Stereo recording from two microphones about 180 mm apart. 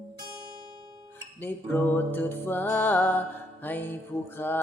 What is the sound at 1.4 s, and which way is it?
Music, 10° left (ahead or behind).